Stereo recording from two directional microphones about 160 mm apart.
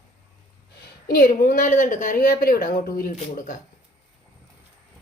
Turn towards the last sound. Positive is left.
turn(degrees=60)  # may be behind; listen again after turning